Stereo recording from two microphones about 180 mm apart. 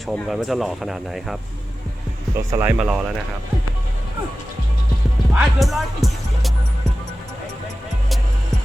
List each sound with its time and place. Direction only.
0.1 s speech: centre (ahead or behind)
2.3 s speech: 15° right (ahead or behind)
2.7 s speech: 5° right (ahead or behind)
5.3 s speech: centre (ahead or behind)